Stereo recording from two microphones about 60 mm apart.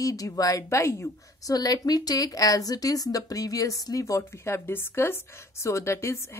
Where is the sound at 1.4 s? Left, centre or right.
Left.